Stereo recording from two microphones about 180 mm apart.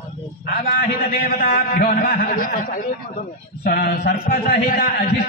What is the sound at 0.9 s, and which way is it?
A man's voice, 60° left (ahead or behind).